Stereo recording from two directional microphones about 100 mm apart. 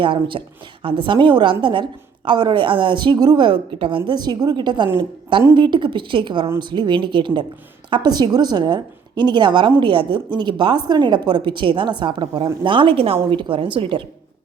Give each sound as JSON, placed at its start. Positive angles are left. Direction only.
{"t": 0.0, "sound": "a woman's voice", "side_deg": -60}
{"t": 13.3, "sound": "a woman's voice", "side_deg": -60}